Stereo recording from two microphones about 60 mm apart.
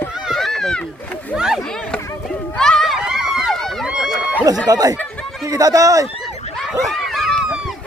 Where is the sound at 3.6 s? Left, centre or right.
Centre.